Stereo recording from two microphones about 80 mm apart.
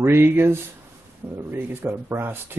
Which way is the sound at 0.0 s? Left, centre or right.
Right.